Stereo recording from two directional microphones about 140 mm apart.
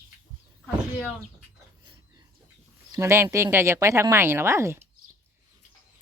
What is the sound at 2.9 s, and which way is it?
Speech, 20° right (ahead or behind).